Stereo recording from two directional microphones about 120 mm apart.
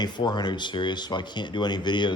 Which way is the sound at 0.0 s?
40° left (ahead or behind).